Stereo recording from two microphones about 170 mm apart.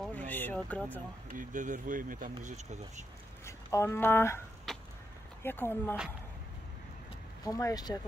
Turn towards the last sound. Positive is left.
turn(degrees=20)  # may be behind; listen again after turning